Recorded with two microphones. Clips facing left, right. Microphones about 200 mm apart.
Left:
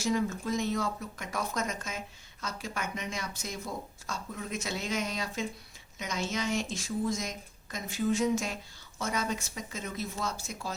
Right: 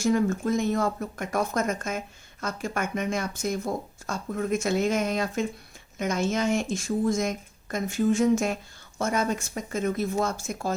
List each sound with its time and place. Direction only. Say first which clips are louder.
0.0 s speech: right 7 dB; 50° right (ahead or behind)